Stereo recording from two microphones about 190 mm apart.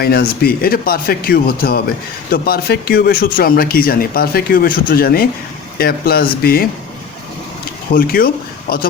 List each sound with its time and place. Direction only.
0.0 s speech: 55° left (ahead or behind)
7.9 s speech: 50° left (ahead or behind)